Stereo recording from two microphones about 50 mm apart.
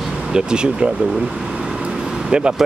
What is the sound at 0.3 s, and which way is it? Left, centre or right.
Speech, centre.